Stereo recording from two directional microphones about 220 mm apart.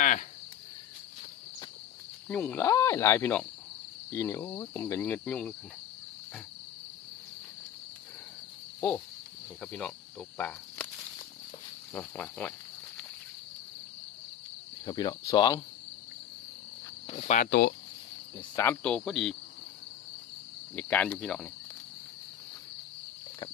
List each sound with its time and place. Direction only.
0.0 s cricket: 35° left (ahead or behind)
2.3 s cricket: 5° left (ahead or behind)
9.6 s speech: 5° left (ahead or behind)
11.9 s cricket: 5° left (ahead or behind)
14.8 s speech: 20° left (ahead or behind)
17.1 s speech: 30° left (ahead or behind); by 17.7 s 45° left (ahead or behind)
18.3 s cricket: 10° left (ahead or behind)
20.7 s cricket: 5° left (ahead or behind)